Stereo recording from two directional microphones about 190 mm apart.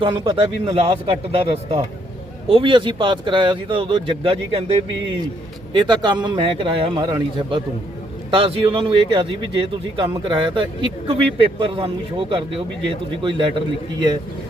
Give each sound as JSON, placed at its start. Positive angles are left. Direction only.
{"t": 0.0, "sound": "speech", "side_deg": -25}
{"t": 5.7, "sound": "speech", "side_deg": -25}